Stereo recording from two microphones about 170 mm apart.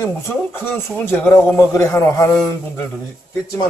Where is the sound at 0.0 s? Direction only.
15° left (ahead or behind).